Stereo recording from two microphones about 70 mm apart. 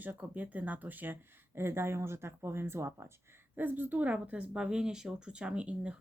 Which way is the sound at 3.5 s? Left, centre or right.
Right.